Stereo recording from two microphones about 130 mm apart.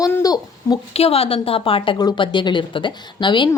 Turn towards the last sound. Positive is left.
turn(degrees=35)  # may be behind; listen again after turning